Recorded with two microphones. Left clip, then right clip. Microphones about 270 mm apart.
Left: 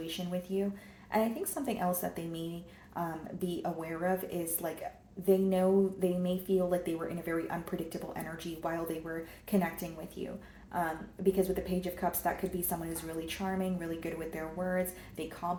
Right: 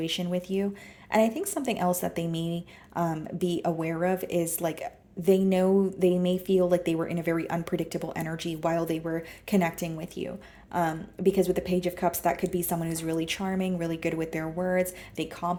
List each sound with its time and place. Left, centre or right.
0.0 s a woman's voice: right